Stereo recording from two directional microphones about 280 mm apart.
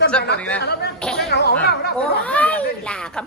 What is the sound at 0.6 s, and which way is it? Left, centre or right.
Speech, left.